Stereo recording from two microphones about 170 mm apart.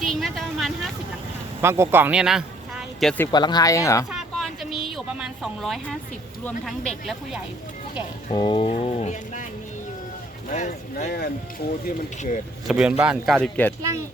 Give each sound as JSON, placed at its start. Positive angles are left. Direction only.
{"t": 0.0, "sound": "a sound", "side_deg": 0}
{"t": 1.6, "sound": "speech", "side_deg": -15}
{"t": 3.3, "sound": "speech", "side_deg": 25}
{"t": 4.1, "sound": "a sound", "side_deg": 0}
{"t": 6.7, "sound": "speech", "side_deg": 0}
{"t": 8.4, "sound": "speech", "side_deg": 30}
{"t": 10.5, "sound": "speech", "side_deg": 45}
{"t": 12.6, "sound": "speech", "side_deg": -5}